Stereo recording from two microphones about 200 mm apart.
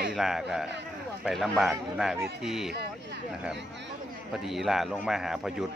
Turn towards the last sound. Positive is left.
turn(degrees=0)  # may be behind; listen again after turning